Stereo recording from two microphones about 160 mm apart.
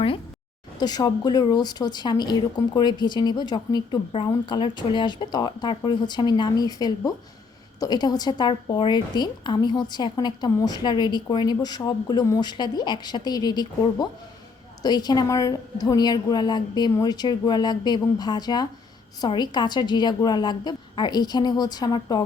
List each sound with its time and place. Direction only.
0.8 s a woman's voice: 25° left (ahead or behind)